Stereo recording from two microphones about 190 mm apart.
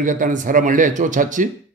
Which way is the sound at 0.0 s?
45° right (ahead or behind).